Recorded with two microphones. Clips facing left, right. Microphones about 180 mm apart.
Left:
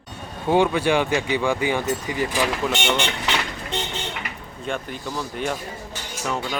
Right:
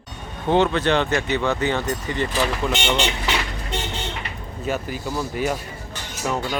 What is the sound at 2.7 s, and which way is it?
Speech, 20° right (ahead or behind).